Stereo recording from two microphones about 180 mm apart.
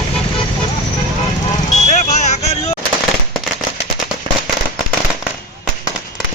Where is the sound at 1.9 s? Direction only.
40° left (ahead or behind).